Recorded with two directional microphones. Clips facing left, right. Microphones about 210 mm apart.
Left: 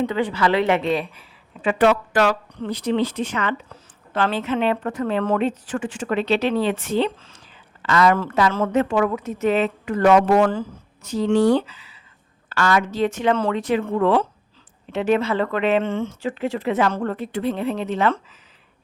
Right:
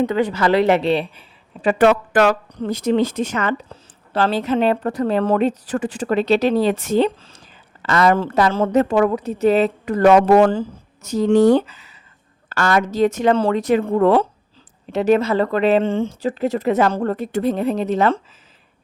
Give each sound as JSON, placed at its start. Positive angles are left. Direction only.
{"t": 0.0, "sound": "a woman's voice", "side_deg": -40}
{"t": 1.6, "sound": "a woman's voice", "side_deg": -50}
{"t": 8.1, "sound": "a woman's voice", "side_deg": -30}
{"t": 11.0, "sound": "a woman's voice", "side_deg": -45}